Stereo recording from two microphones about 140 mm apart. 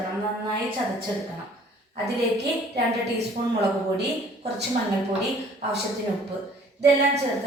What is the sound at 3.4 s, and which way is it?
Speech, 40° right (ahead or behind).